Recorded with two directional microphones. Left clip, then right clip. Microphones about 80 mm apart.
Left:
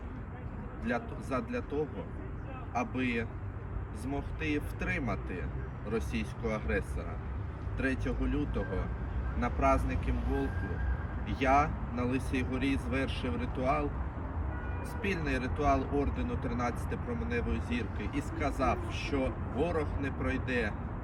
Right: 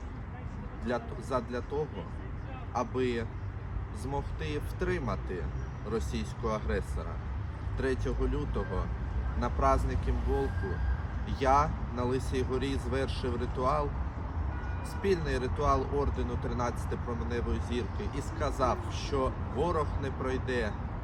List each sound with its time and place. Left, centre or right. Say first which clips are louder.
0.9 s speech: right 1 dB; right
9.4 s speech: right 1 dB; right
11.3 s speech: right 1 dB; right
15.0 s speech: right 4 dB; right